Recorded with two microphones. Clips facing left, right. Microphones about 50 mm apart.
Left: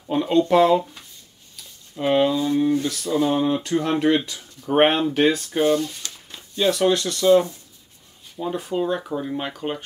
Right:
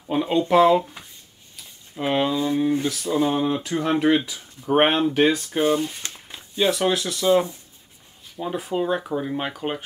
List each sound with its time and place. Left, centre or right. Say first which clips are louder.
0.0 s speech: left 2 dB; centre
1.6 s a sound: left 2 dB; centre
2.3 s speech: left 1 dB; centre
3.3 s speech: left 2 dB; centre
5.8 s speech: even; right
6.3 s speech: left 1 dB; centre